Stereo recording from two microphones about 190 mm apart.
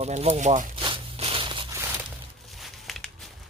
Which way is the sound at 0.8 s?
30° right (ahead or behind).